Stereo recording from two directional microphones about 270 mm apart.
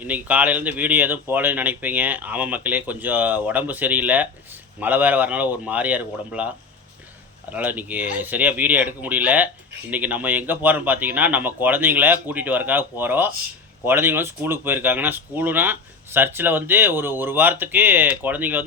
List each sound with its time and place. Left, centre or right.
0.0 s speech: centre
7.5 s speech: centre